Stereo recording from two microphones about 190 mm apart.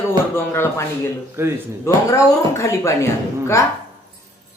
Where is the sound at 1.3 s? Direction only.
15° right (ahead or behind).